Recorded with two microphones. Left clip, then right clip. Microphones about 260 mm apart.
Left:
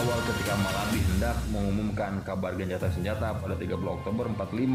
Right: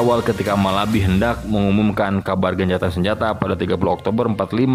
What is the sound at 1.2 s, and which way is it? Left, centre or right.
Speech, right.